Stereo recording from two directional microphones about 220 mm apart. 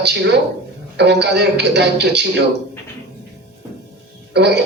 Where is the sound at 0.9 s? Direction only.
50° right (ahead or behind).